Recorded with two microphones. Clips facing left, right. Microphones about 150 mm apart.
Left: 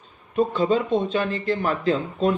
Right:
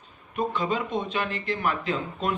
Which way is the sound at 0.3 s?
30° left (ahead or behind).